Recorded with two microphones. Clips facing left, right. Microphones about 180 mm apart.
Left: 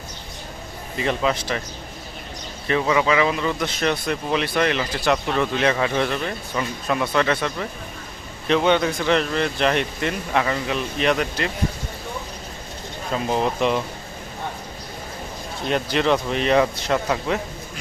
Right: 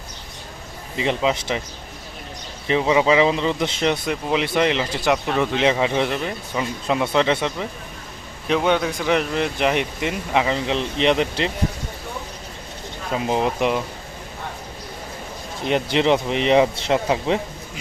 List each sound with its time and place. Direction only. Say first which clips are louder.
0.9 s speech: right 1 dB; 20° right (ahead or behind)
2.6 s speech: right 2 dB; 20° right (ahead or behind)
8.4 s speech: left 1 dB; 5° right (ahead or behind); by 11.5 s 25° right (ahead or behind)
13.1 s speech: right 1 dB; 15° right (ahead or behind)
15.6 s speech: right 2 dB; 20° right (ahead or behind)